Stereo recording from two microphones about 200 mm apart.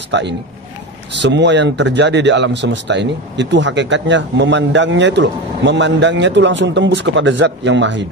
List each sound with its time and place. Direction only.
0.1 s speech: 60° right (ahead or behind)